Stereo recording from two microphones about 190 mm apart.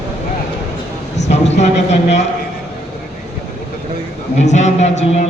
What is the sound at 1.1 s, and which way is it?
Speech, 35° left (ahead or behind).